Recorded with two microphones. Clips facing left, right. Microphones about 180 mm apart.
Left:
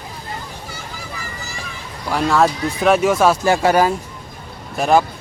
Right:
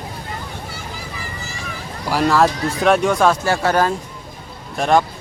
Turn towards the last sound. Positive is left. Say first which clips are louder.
# left 1 dB
turn(degrees=5)  # may be behind; listen again after turning